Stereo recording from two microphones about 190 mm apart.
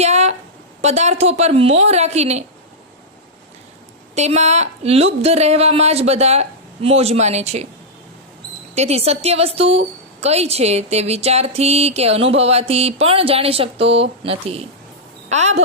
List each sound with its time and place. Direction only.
0.0 s a sound: 35° right (ahead or behind)
0.8 s a woman's voice: 35° right (ahead or behind)
4.1 s a woman's voice: 35° right (ahead or behind)
8.7 s a woman's voice: 35° right (ahead or behind)